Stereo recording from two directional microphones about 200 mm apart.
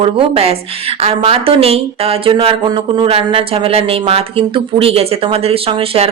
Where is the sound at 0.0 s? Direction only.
30° right (ahead or behind).